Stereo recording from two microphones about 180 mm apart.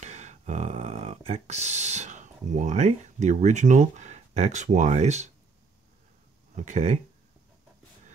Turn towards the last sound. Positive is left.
turn(degrees=-40)  # may be behind; listen again after turning